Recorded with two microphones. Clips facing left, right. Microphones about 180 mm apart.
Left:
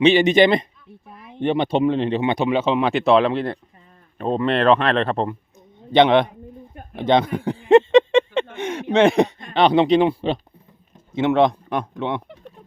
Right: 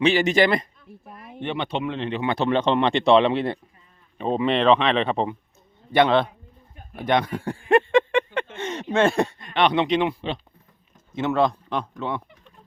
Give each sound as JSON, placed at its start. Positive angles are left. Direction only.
{"t": 0.0, "sound": "a man's voice", "side_deg": 20}
{"t": 1.4, "sound": "speech", "side_deg": 40}
{"t": 2.2, "sound": "speech", "side_deg": 15}
{"t": 5.9, "sound": "a man's voice", "side_deg": 20}
{"t": 7.7, "sound": "a sound", "side_deg": 20}
{"t": 8.5, "sound": "a sound", "side_deg": 10}
{"t": 9.5, "sound": "speech", "side_deg": 30}
{"t": 11.3, "sound": "speech", "side_deg": 15}